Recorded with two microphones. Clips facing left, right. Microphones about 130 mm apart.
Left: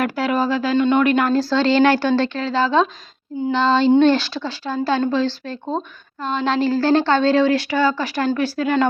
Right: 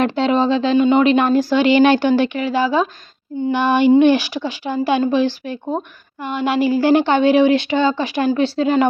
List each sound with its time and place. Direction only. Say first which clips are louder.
0.0 s speech: right 4 dB; 25° right (ahead or behind)